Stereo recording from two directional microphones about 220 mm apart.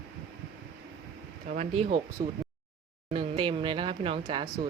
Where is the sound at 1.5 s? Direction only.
30° right (ahead or behind).